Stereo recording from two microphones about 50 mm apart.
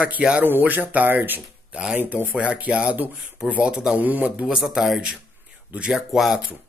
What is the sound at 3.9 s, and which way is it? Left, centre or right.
Speech, right.